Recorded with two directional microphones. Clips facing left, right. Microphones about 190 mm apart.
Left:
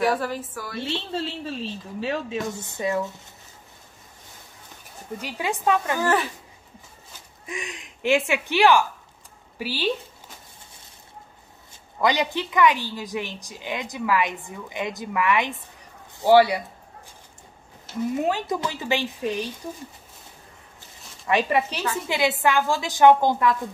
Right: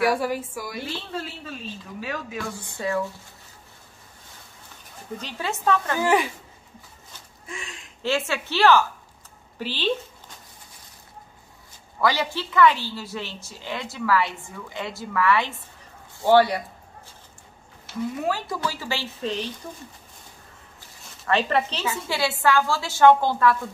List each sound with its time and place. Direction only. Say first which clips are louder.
0.0 s a woman's voice: right 1 dB; 10° right (ahead or behind)
0.8 s a woman's voice: left 4 dB; 25° left (ahead or behind)
5.2 s a woman's voice: left 2 dB; 15° left (ahead or behind)
5.9 s a woman's voice: right 1 dB; 15° right (ahead or behind)
7.4 s a woman's voice: left 4 dB; 20° left (ahead or behind)
12.0 s a woman's voice: left 1 dB; 20° left (ahead or behind)
18.1 s a woman's voice: left 5 dB; 20° left (ahead or behind)
21.3 s a woman's voice: left 1 dB; 15° left (ahead or behind)